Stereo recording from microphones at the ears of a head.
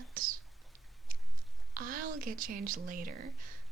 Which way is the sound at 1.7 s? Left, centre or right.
Right.